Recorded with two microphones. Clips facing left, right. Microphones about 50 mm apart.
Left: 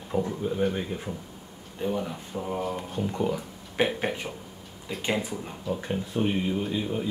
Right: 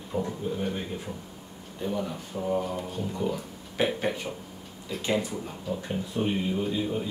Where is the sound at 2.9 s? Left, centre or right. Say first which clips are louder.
Left 4 dB; left.